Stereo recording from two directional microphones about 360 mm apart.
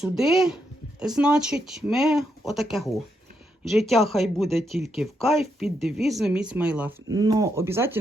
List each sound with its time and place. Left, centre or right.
0.0 s speech: centre